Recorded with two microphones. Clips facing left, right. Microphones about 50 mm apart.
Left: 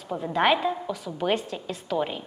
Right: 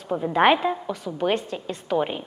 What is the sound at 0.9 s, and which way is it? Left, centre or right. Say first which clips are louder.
Speech: right 2 dB; centre.